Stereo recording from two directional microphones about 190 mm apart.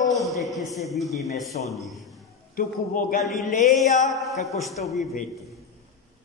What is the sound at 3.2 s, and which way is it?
A man's voice, centre (ahead or behind).